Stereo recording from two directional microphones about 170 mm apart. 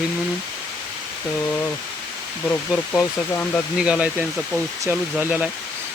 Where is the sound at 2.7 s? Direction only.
5° right (ahead or behind).